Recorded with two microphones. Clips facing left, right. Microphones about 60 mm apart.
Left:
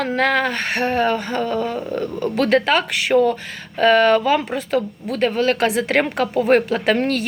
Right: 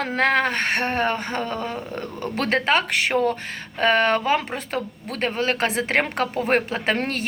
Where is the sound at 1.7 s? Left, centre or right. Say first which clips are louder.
Left 7 dB; left.